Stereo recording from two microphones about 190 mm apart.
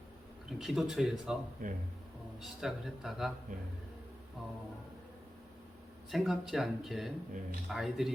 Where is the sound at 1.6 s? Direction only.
45° right (ahead or behind).